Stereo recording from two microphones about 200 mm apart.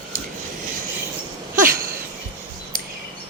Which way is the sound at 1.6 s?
45° right (ahead or behind).